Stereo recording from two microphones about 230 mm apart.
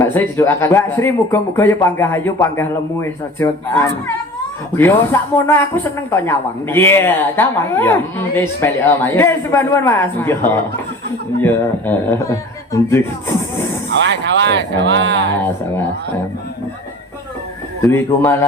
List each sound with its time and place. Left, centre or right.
0.0 s a woman's voice: centre
14.0 s speech: right
17.8 s a woman's voice: centre